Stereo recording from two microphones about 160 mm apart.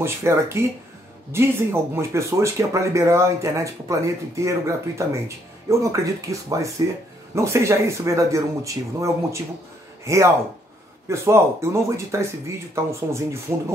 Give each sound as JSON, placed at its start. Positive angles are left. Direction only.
{"t": 0.0, "sound": "speech", "side_deg": -15}